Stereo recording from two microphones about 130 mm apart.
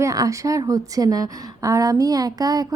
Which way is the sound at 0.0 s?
25° right (ahead or behind).